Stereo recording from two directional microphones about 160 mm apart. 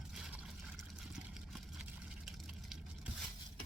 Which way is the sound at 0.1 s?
5° right (ahead or behind).